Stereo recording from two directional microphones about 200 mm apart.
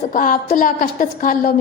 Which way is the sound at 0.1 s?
40° left (ahead or behind).